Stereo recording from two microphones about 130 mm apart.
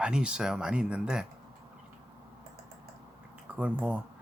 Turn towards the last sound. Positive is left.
turn(degrees=-10)  # may be behind; listen again after turning